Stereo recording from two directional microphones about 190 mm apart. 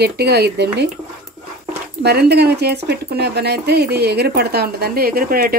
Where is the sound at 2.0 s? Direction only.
60° right (ahead or behind).